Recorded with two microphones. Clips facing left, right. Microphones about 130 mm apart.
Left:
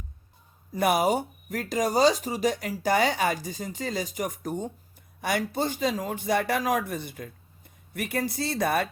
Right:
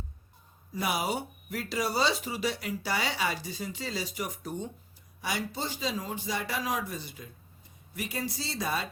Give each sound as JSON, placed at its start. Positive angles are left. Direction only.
{"t": 0.7, "sound": "a man's voice", "side_deg": 50}